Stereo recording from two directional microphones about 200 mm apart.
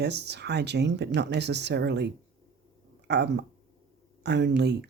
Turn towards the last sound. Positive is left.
turn(degrees=-60)  # may be behind; listen again after turning